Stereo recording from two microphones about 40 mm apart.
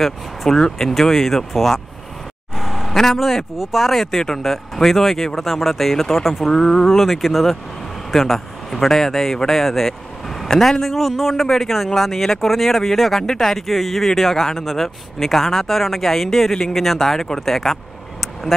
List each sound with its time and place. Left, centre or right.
0.0 s a man's voice: centre
0.6 s a man's voice: centre
2.5 s vehicle: centre
3.0 s a man's voice: centre
6.5 s a man's voice: centre